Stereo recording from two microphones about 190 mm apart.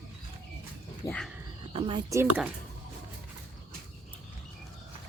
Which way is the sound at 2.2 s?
10° right (ahead or behind).